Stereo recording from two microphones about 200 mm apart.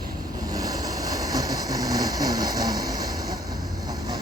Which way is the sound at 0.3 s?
20° right (ahead or behind).